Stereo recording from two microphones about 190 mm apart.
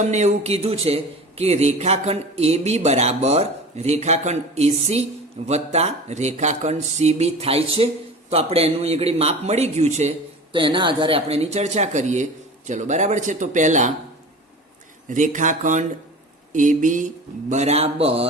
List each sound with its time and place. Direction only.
0.0 s a man's voice: 35° right (ahead or behind)
15.1 s a man's voice: 40° right (ahead or behind)